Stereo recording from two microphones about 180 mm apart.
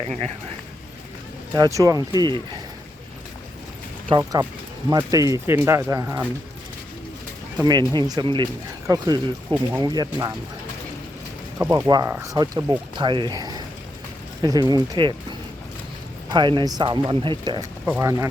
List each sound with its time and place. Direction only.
1.5 s speech: 20° right (ahead or behind)
4.2 s speech: 20° right (ahead or behind)
7.6 s speech: 25° right (ahead or behind)
11.6 s speech: 20° right (ahead or behind)
17.8 s speech: 10° right (ahead or behind)